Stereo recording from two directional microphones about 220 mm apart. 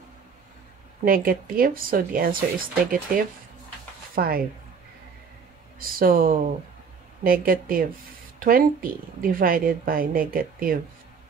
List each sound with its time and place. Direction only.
1.0 s speech: 40° right (ahead or behind)
5.8 s speech: 40° right (ahead or behind)